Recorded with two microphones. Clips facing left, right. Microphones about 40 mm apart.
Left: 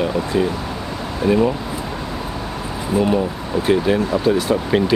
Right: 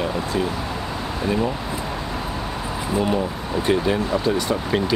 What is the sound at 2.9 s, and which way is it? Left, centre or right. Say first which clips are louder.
Speech: left 5 dB; centre.